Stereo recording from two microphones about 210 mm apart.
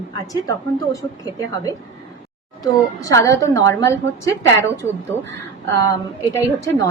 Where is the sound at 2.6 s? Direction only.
15° left (ahead or behind).